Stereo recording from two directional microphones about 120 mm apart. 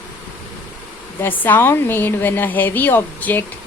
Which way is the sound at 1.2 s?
15° left (ahead or behind).